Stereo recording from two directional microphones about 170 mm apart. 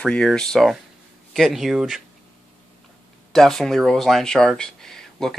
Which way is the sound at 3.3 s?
Centre (ahead or behind).